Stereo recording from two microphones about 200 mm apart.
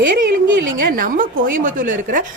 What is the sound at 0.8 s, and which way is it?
A woman's voice, 45° right (ahead or behind).